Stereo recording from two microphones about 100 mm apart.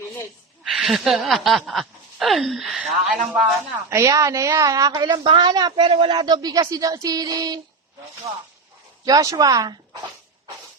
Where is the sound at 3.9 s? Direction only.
30° right (ahead or behind).